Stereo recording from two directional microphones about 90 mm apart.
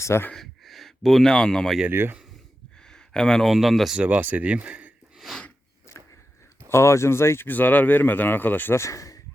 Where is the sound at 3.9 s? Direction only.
15° right (ahead or behind).